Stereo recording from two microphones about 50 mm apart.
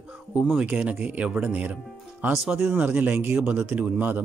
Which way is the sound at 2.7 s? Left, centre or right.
Right.